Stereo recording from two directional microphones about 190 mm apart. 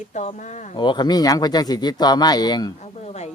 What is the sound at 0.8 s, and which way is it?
Speech, 25° left (ahead or behind).